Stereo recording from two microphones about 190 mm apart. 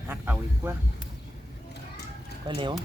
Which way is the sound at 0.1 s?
10° right (ahead or behind).